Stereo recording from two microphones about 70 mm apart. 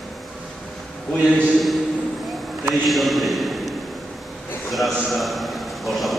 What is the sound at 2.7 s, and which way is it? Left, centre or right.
A man's voice, centre.